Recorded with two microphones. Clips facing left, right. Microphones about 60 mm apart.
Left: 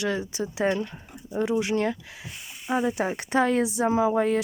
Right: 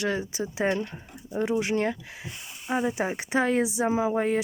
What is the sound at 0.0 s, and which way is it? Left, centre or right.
Speech, right.